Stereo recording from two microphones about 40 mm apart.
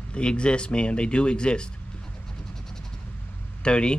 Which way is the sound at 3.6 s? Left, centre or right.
Left.